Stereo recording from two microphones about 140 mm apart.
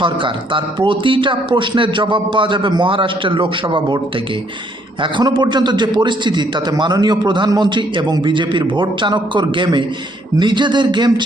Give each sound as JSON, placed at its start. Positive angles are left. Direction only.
{"t": 0.0, "sound": "a man's voice", "side_deg": -35}
{"t": 5.1, "sound": "a man's voice", "side_deg": -30}